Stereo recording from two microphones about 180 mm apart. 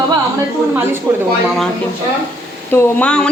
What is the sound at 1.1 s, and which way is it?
Speech, 15° right (ahead or behind).